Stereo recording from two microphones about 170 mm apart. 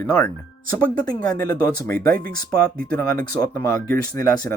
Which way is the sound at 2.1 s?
60° right (ahead or behind).